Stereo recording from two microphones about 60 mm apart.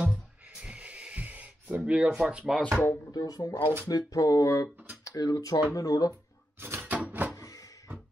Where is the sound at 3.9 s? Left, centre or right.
Left.